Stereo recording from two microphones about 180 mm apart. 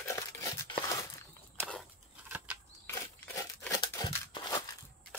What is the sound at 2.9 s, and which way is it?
Crumpling, 15° left (ahead or behind).